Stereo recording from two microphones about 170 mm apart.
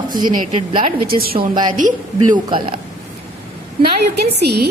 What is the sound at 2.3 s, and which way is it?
Speech, 30° right (ahead or behind).